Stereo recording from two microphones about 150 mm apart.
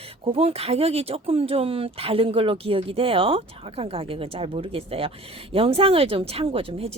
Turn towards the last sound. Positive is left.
turn(degrees=-40)  # may be behind; listen again after turning